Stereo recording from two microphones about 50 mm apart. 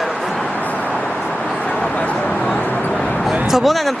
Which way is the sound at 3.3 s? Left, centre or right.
Centre.